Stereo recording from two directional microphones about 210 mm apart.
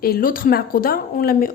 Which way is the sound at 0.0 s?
45° left (ahead or behind).